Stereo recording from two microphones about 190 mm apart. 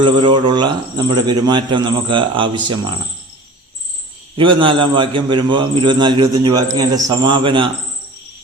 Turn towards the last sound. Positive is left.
turn(degrees=-25)  # may be behind; listen again after turning